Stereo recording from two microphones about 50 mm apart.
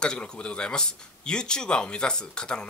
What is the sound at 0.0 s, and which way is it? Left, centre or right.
Speech, centre.